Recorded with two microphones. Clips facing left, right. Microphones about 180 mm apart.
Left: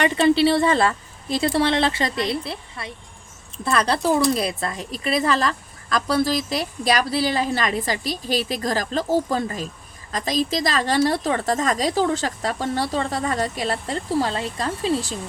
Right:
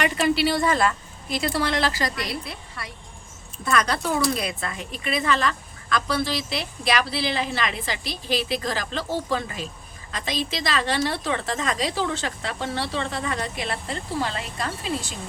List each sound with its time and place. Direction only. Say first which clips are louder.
0.0 s a woman's voice: left 5 dB; 30° left (ahead or behind)